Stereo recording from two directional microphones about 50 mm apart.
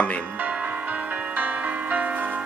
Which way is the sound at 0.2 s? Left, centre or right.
Right.